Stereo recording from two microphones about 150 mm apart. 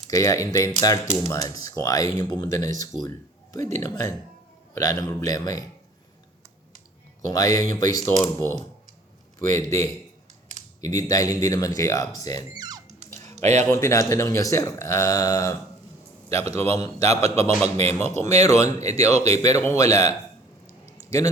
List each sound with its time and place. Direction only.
0.1 s speech: 20° left (ahead or behind)
3.8 s speech: 20° left (ahead or behind)
7.3 s a man's voice: 25° left (ahead or behind)
12.5 s music: 25° right (ahead or behind)
13.1 s a sound: 50° right (ahead or behind)
13.7 s speech: 20° left (ahead or behind)
16.4 s speech: 45° right (ahead or behind)
19.5 s speech: 20° left (ahead or behind)
19.8 s speech: 45° right (ahead or behind)
21.0 s a sound: 20° left (ahead or behind)